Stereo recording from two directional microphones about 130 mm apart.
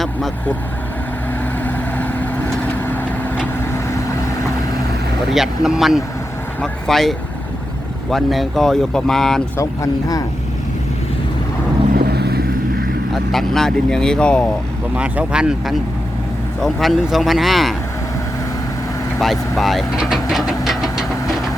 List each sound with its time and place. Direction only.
1.6 s vehicle: 15° left (ahead or behind)
5.3 s speech: 5° right (ahead or behind)
9.6 s speech: 25° left (ahead or behind)
13.3 s speech: 5° left (ahead or behind)
14.9 s speech: 10° right (ahead or behind)
19.2 s speech: centre (ahead or behind)